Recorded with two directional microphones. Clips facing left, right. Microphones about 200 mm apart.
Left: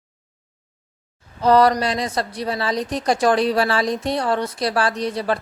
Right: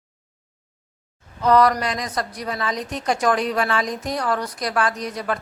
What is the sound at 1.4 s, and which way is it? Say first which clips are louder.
A woman's voice: left 2 dB; 30° left (ahead or behind).